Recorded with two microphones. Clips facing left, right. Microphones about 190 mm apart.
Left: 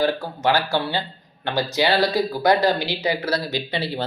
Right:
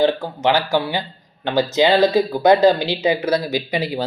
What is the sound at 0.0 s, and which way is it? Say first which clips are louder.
Speech: right 4 dB; 20° right (ahead or behind).